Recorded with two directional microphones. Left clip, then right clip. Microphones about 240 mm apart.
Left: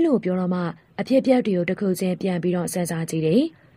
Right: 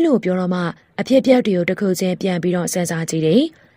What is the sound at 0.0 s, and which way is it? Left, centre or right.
A woman's voice, right.